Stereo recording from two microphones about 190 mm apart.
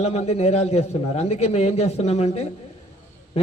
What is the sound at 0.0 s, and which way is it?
A man's voice, 35° left (ahead or behind).